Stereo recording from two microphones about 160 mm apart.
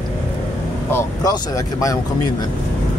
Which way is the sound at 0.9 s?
20° left (ahead or behind).